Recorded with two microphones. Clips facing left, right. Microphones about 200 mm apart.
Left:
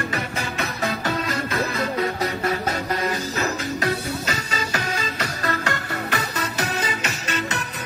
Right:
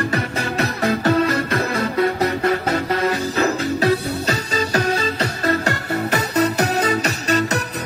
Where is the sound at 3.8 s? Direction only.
35° right (ahead or behind).